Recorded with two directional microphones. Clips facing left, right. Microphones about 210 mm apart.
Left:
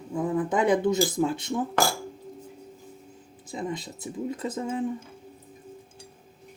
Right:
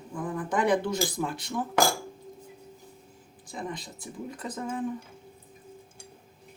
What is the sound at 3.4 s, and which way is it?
Speech, 25° left (ahead or behind).